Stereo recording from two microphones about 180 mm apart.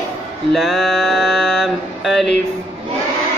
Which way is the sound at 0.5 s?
Centre (ahead or behind).